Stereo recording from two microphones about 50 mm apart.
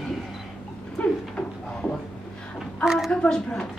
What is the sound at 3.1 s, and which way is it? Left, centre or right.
Speech, centre.